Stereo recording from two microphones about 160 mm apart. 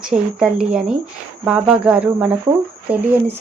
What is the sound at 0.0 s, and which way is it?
A woman's voice, 5° right (ahead or behind).